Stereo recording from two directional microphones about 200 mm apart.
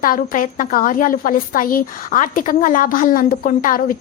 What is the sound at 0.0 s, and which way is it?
A woman's voice, 45° left (ahead or behind).